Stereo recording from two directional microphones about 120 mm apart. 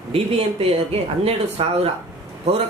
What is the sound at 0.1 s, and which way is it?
A man's voice, 55° right (ahead or behind).